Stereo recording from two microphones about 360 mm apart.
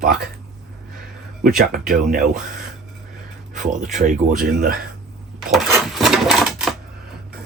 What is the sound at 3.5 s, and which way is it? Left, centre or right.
Speech, right.